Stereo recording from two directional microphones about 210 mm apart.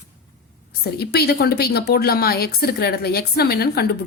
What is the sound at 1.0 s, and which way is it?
A woman's voice, 50° left (ahead or behind).